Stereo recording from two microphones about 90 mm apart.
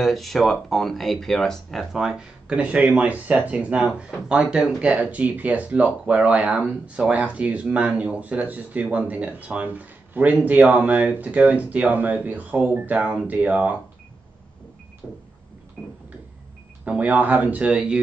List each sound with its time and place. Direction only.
0.0 s speech: centre (ahead or behind); by 13.7 s 15° right (ahead or behind)
15.0 s vehicle: centre (ahead or behind)
16.8 s speech: 15° right (ahead or behind)